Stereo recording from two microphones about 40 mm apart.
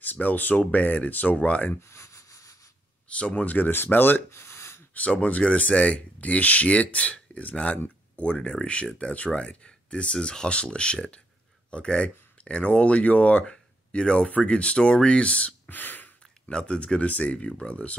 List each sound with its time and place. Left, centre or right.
0.0 s speech: left
3.1 s speech: left
3.4 s speech: left
3.7 s speech: left
4.9 s speech: left
8.4 s speech: left
15.7 s a sound: left
16.4 s speech: left